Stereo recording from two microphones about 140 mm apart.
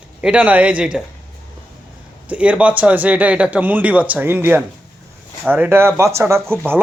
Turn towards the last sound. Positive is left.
turn(degrees=-20)  # may be behind; listen again after turning